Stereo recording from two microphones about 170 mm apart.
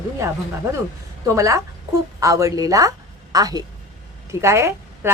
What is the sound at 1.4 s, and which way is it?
A woman's voice, 20° right (ahead or behind).